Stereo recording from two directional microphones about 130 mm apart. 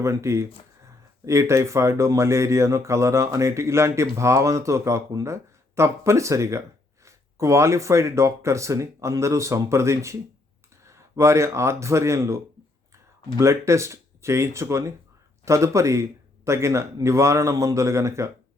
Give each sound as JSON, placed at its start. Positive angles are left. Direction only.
{"t": 0.0, "sound": "speech", "side_deg": -20}
{"t": 13.4, "sound": "speech", "side_deg": -20}